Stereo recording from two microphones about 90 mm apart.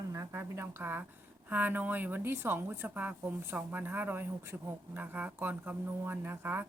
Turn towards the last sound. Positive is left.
turn(degrees=-25)  # may be behind; listen again after turning